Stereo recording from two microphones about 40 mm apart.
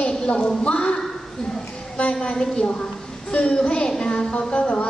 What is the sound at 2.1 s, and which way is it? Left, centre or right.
Speech, centre.